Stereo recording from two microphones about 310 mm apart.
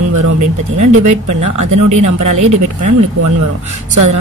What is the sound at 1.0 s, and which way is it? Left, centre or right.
Speech, right.